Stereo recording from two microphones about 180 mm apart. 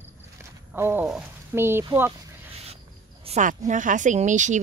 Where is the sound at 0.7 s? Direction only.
10° right (ahead or behind).